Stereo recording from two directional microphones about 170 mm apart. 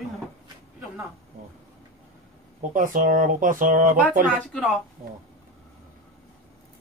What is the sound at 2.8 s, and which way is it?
Speech, 55° right (ahead or behind).